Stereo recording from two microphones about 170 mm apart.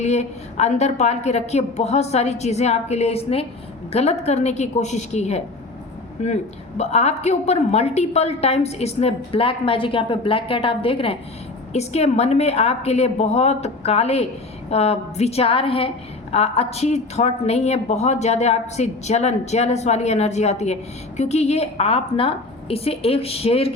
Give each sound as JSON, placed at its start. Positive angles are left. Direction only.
{"t": 0.0, "sound": "a woman's voice", "side_deg": 40}